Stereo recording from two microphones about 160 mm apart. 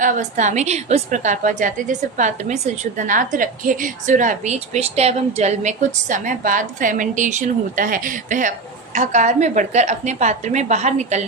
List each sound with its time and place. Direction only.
0.0 s a woman's voice: 50° right (ahead or behind)